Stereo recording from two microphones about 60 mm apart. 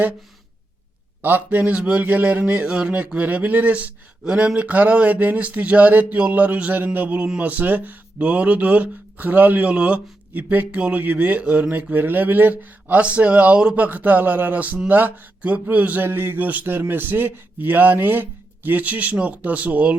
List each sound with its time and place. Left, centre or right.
1.2 s speech: right
4.2 s a man's voice: centre